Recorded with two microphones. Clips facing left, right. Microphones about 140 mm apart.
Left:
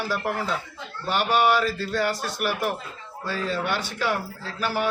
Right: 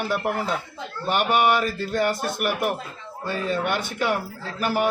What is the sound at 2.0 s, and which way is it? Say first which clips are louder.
Speech: right 4 dB; 50° right (ahead or behind).